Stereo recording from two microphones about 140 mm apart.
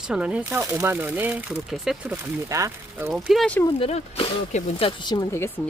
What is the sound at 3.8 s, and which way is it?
Speech, 40° left (ahead or behind).